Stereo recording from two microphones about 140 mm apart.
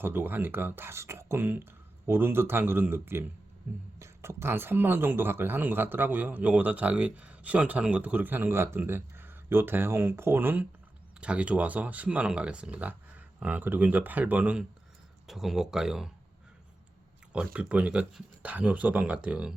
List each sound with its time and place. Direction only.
0.0 s speech: 15° right (ahead or behind)
17.3 s speech: 10° right (ahead or behind)